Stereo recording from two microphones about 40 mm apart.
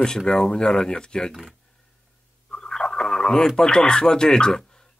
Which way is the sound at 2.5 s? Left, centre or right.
Centre.